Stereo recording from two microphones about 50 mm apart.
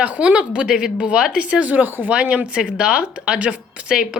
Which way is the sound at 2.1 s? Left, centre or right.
Right.